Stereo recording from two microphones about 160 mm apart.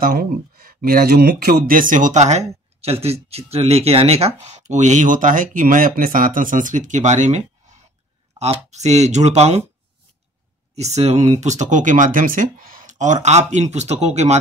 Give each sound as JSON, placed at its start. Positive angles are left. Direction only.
{"t": 0.0, "sound": "speech", "side_deg": -65}
{"t": 10.7, "sound": "speech", "side_deg": -45}